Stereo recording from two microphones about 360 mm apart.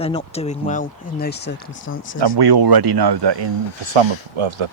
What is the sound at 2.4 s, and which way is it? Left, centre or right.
Speech, right.